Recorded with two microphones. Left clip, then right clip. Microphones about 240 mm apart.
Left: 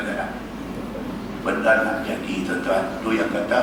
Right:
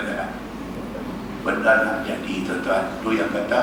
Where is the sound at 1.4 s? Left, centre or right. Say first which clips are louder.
Right 1 dB; centre.